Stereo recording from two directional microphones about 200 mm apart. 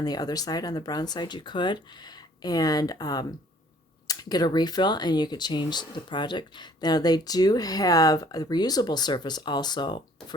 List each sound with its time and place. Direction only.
0.0 s speech: 20° left (ahead or behind)